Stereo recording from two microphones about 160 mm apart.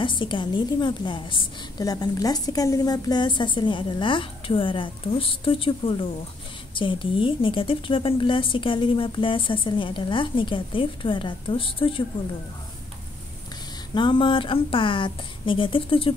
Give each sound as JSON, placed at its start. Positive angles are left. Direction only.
{"t": 0.0, "sound": "a woman's voice", "side_deg": 30}
{"t": 13.9, "sound": "speech", "side_deg": 30}